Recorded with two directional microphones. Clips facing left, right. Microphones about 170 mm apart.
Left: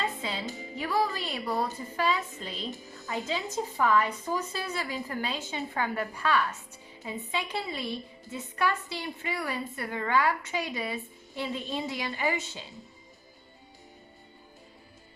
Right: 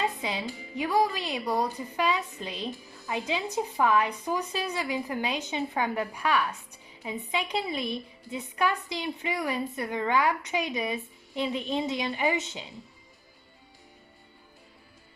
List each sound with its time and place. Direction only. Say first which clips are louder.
0.0 s music: right 3 dB; 15° right (ahead or behind)
0.4 s speech: even; 20° left (ahead or behind)
0.8 s a woman's voice: right 3 dB; 15° right (ahead or behind)